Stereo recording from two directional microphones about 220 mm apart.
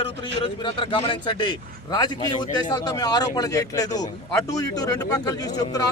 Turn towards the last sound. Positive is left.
turn(degrees=15)  # may be behind; listen again after turning